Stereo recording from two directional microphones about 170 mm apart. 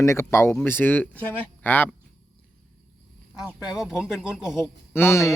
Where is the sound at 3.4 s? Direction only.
5° right (ahead or behind).